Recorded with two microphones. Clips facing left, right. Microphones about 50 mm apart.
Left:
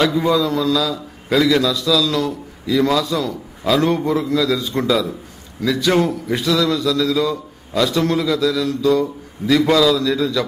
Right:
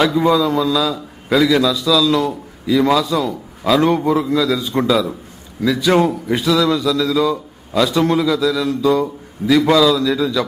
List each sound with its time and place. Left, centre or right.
0.0 s a man's voice: centre
8.6 s mantra: right
9.5 s a man's voice: centre